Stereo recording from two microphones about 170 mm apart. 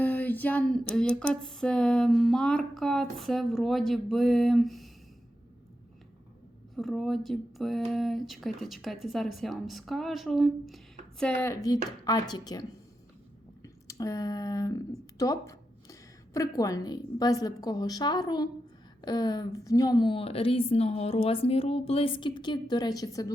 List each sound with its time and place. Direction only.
0.0 s a sound: 10° left (ahead or behind)
6.7 s a sound: centre (ahead or behind)
11.2 s speech: 10° left (ahead or behind)
12.0 s a woman's voice: 25° left (ahead or behind)
13.6 s clicking: 20° left (ahead or behind)
15.2 s a woman's voice: 20° left (ahead or behind)